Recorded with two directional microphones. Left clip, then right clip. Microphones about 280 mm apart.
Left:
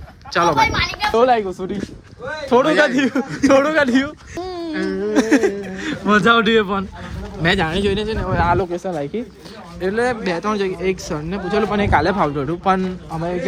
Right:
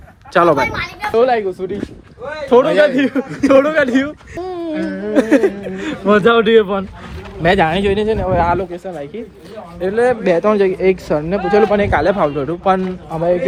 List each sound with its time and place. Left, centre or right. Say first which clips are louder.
0.7 s speech: left 2 dB; left
1.1 s speech: right 3 dB; centre
2.8 s speech: right 3 dB; centre
8.5 s speech: left 1 dB; left
9.8 s speech: right 5 dB; centre
10.2 s speech: right 8 dB; centre